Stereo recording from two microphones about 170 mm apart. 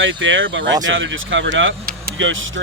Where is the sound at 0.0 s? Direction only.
90° right.